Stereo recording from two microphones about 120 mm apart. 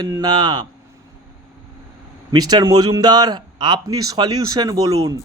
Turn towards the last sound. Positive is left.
turn(degrees=-30)  # may be behind; listen again after turning